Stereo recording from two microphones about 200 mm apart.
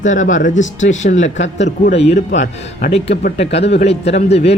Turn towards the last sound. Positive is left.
turn(degrees=30)  # may be behind; listen again after turning